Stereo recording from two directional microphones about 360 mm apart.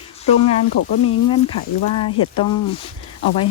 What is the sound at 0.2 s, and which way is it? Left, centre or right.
Speech, centre.